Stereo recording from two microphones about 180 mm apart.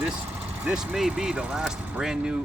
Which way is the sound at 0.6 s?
5° right (ahead or behind).